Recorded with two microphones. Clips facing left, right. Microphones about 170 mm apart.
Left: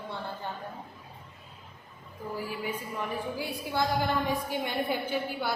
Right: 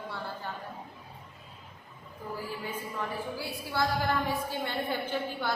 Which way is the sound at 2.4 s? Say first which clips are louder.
Left 2 dB; 15° left (ahead or behind).